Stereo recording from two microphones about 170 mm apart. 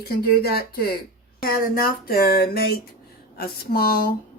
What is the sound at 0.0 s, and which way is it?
Speech, 65° left (ahead or behind).